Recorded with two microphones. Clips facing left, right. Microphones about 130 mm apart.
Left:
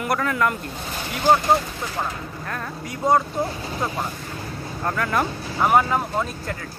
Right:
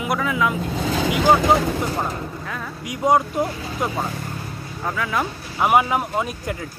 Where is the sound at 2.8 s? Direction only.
15° right (ahead or behind).